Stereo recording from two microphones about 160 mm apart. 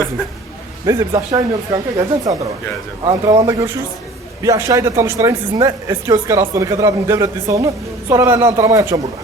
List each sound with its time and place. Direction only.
0.9 s a woman's voice: 20° right (ahead or behind)